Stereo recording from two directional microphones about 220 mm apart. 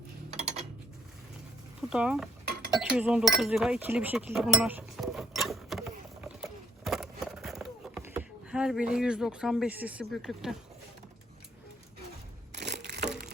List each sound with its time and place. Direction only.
0.3 s a sound: 30° right (ahead or behind)
1.9 s stir: 5° right (ahead or behind)
2.9 s chink: 5° right (ahead or behind)
12.5 s crushing: 50° right (ahead or behind)